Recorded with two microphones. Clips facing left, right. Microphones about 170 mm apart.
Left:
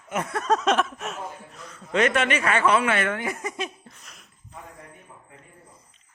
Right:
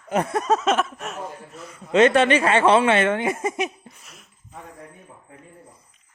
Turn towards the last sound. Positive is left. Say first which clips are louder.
# right 2 dB
turn(degrees=0)  # may be behind; listen again after turning